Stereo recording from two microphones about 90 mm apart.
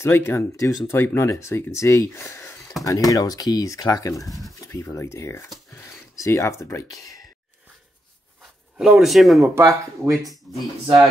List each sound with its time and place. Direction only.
0.0 s speech: 30° left (ahead or behind)
8.7 s speech: 5° right (ahead or behind)
9.6 s speech: 30° right (ahead or behind)